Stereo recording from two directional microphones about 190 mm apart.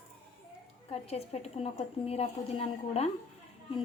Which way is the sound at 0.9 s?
35° left (ahead or behind).